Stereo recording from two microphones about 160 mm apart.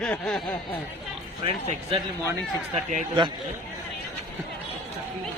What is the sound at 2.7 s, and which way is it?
Speech, 50° right (ahead or behind).